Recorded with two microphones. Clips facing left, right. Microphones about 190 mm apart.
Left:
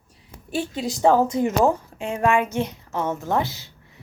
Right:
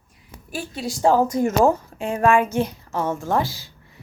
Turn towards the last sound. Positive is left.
turn(degrees=20)  # may be behind; listen again after turning